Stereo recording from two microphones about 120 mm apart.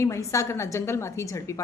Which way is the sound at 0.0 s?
25° left (ahead or behind).